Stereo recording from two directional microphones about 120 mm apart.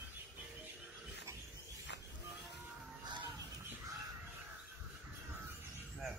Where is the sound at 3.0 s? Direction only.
40° right (ahead or behind).